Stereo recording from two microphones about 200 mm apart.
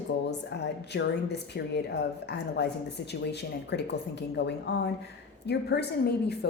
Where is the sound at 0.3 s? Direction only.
60° left (ahead or behind).